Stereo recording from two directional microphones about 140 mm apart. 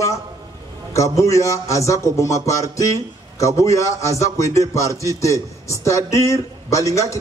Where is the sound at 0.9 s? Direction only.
20° left (ahead or behind).